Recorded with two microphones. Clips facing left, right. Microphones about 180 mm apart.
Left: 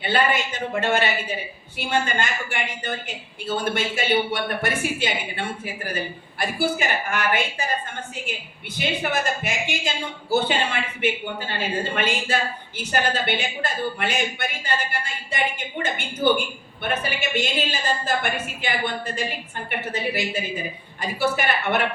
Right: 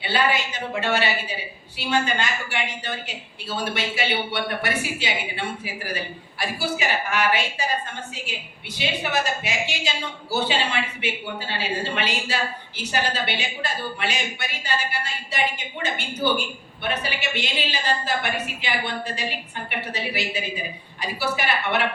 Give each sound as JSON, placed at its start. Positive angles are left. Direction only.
{"t": 0.0, "sound": "speech", "side_deg": 50}
{"t": 6.6, "sound": "speech", "side_deg": 50}
{"t": 8.8, "sound": "speech", "side_deg": 50}